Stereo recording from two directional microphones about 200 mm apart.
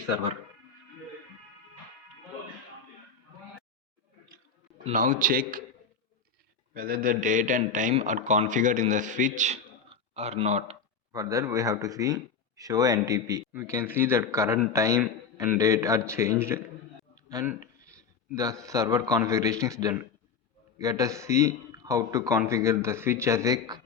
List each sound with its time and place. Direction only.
4.9 s a man's voice: 40° right (ahead or behind)
6.7 s a man's voice: 45° right (ahead or behind); by 10.8 s 30° right (ahead or behind)
11.1 s a man's voice: 15° right (ahead or behind)